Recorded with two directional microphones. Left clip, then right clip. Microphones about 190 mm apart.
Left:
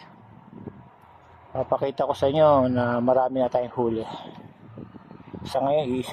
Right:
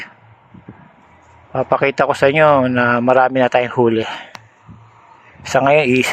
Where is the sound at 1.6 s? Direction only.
35° right (ahead or behind).